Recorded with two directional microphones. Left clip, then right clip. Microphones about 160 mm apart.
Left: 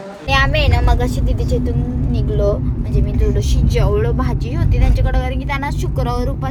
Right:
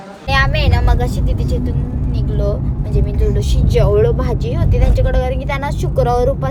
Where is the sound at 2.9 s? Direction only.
10° right (ahead or behind).